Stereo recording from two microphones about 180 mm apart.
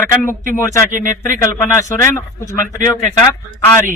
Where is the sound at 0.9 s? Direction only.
45° right (ahead or behind).